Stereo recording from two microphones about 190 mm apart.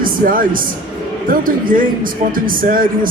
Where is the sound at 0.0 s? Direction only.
45° right (ahead or behind).